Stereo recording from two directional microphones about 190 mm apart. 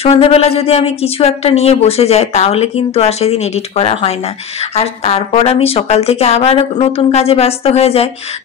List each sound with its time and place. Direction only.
0.0 s speech: 30° left (ahead or behind)